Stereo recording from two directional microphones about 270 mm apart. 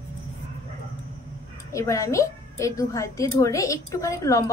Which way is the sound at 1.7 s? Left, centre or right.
Centre.